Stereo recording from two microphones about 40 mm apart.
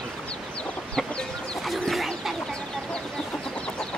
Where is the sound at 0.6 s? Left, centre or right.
Left.